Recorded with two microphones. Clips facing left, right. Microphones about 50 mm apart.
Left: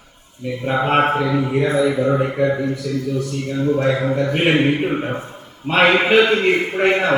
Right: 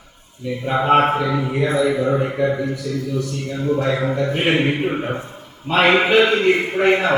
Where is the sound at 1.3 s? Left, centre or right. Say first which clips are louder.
Left 3 dB; centre.